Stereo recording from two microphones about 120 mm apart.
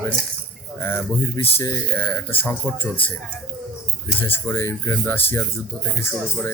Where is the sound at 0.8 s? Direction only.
20° left (ahead or behind).